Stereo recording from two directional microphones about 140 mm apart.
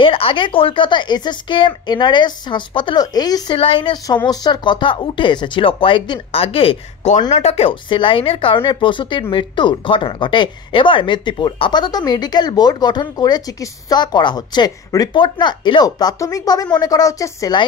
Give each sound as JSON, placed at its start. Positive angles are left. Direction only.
{"t": 0.0, "sound": "speech", "side_deg": 40}
{"t": 3.5, "sound": "a woman's voice", "side_deg": 40}